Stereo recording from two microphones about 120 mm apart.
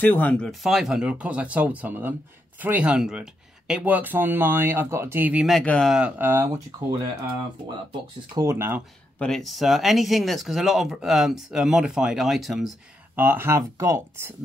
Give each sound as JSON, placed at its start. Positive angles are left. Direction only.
{"t": 0.0, "sound": "speech", "side_deg": 15}
{"t": 5.5, "sound": "speech", "side_deg": 5}
{"t": 5.9, "sound": "speech", "side_deg": -15}
{"t": 8.4, "sound": "speech", "side_deg": -20}
{"t": 9.2, "sound": "speech", "side_deg": 5}
{"t": 13.1, "sound": "speech", "side_deg": -15}